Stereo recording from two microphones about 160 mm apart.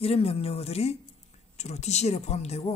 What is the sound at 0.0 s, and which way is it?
A man's voice, 40° left (ahead or behind).